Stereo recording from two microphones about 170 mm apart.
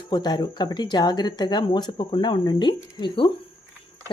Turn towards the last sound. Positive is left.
turn(degrees=30)  # may be behind; listen again after turning